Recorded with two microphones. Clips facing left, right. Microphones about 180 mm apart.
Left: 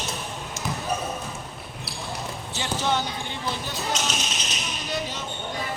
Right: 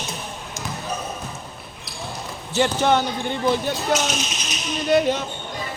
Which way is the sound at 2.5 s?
60° right (ahead or behind).